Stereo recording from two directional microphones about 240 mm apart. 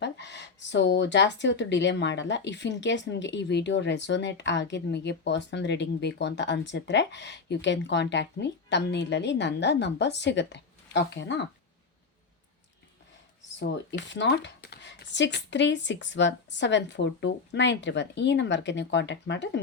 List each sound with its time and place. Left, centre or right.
0.0 s speech: left
13.6 s speech: left